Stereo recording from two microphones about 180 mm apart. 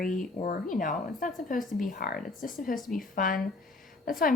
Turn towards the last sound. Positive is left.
turn(degrees=50)  # may be behind; listen again after turning